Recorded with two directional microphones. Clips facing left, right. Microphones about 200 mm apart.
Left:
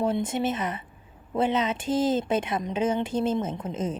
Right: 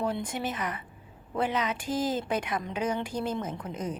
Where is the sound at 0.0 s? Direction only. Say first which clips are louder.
Left 5 dB; 25° left (ahead or behind).